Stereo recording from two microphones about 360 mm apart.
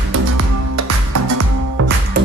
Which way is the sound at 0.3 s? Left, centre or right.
Right.